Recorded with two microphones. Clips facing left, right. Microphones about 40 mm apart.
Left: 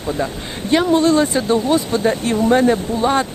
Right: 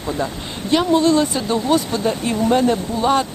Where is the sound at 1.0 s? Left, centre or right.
Centre.